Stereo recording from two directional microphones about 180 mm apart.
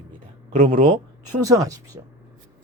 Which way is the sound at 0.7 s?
55° right (ahead or behind).